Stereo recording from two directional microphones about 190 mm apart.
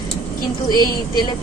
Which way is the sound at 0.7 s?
20° left (ahead or behind).